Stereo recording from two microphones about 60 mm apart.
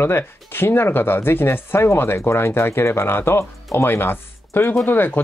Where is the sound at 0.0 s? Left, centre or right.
Left.